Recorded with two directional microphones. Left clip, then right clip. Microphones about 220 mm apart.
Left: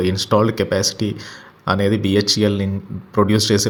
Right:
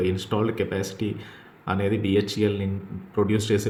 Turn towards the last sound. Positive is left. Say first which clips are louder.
# left 7 dB
turn(degrees=35)  # may be behind; listen again after turning